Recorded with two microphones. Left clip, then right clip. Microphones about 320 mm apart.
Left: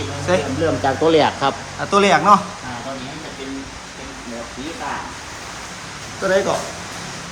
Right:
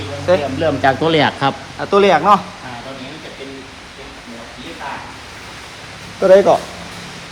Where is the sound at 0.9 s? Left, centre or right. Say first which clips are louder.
Right 1 dB; right.